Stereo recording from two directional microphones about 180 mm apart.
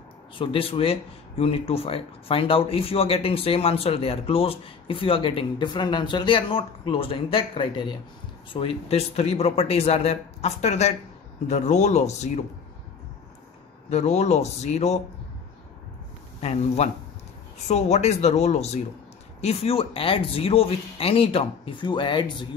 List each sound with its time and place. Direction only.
0.4 s speech: 30° left (ahead or behind)
13.8 s speech: 40° left (ahead or behind)
16.3 s speech: 35° left (ahead or behind)